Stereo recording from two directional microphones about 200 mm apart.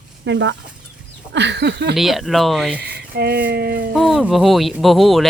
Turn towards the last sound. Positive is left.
turn(degrees=0)  # may be behind; listen again after turning